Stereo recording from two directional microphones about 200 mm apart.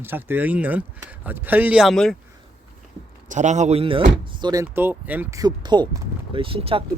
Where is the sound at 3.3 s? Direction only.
35° right (ahead or behind); by 4.6 s 20° right (ahead or behind).